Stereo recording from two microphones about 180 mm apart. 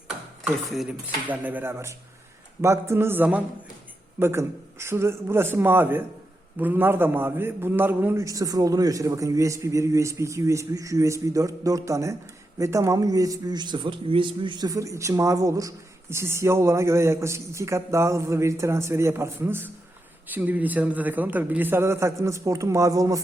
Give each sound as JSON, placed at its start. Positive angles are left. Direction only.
{"t": 0.4, "sound": "speech", "side_deg": -5}